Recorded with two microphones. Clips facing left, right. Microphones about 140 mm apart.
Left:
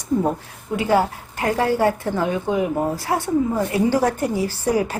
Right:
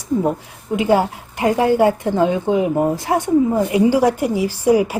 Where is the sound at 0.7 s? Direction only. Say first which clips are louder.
Right 3 dB; 20° right (ahead or behind).